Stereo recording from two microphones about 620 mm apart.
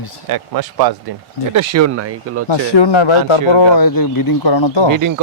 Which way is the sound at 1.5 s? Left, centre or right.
Right.